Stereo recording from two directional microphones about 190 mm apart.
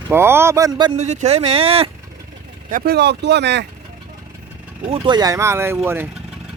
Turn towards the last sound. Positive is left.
turn(degrees=-10)  # may be behind; listen again after turning